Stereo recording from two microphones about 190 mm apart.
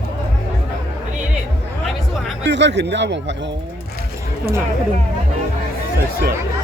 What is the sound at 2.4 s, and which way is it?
Speech, 65° right (ahead or behind).